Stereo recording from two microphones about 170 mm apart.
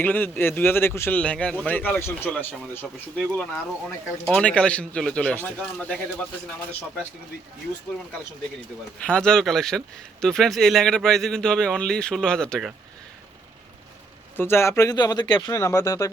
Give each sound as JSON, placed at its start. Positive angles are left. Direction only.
{"t": 0.0, "sound": "a man's voice", "side_deg": 10}
{"t": 4.3, "sound": "speech", "side_deg": 5}
{"t": 9.0, "sound": "speech", "side_deg": 5}
{"t": 14.3, "sound": "speech", "side_deg": 15}